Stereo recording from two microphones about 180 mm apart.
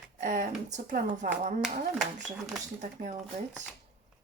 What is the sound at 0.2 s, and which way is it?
Speech, 45° right (ahead or behind).